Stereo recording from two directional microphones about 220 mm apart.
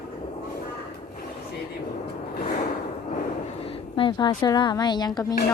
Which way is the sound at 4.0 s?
20° left (ahead or behind).